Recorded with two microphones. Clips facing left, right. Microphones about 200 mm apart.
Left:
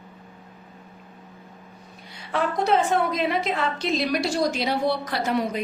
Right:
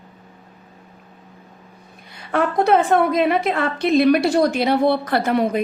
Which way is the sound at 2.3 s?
55° right (ahead or behind).